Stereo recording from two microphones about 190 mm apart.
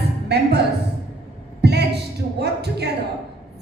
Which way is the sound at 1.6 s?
60° right (ahead or behind).